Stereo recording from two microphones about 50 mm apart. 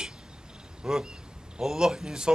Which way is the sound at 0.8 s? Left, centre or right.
Centre.